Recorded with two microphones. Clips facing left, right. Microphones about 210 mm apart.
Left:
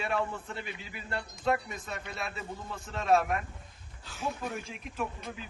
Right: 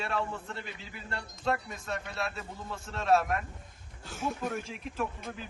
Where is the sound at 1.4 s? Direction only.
5° left (ahead or behind).